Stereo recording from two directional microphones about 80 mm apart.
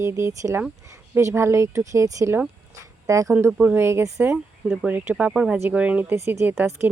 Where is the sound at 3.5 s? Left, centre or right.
Centre.